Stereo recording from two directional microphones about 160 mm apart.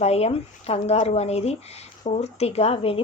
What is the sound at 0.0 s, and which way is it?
Speech, 40° left (ahead or behind).